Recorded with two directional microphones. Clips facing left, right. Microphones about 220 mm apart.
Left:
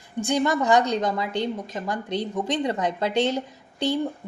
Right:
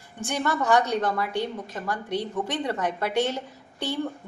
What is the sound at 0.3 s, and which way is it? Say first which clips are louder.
A woman's voice: left 3 dB; 15° left (ahead or behind).